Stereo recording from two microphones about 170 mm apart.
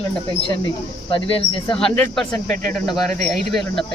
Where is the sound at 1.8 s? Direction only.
5° left (ahead or behind).